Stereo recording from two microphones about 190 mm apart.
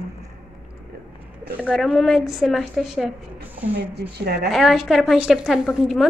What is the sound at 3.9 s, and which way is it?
Speech, 55° right (ahead or behind).